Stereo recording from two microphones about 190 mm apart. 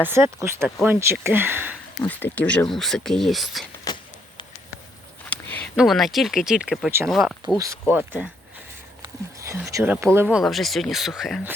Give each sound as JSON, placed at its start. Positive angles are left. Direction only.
{"t": 0.0, "sound": "speech", "side_deg": -10}
{"t": 2.0, "sound": "speech", "side_deg": 10}
{"t": 5.3, "sound": "a sound", "side_deg": 10}
{"t": 5.7, "sound": "speech", "side_deg": 0}
{"t": 7.6, "sound": "speech", "side_deg": -15}
{"t": 10.3, "sound": "speech", "side_deg": 0}